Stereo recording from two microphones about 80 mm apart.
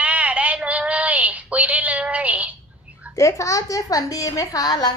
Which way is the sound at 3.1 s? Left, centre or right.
Left.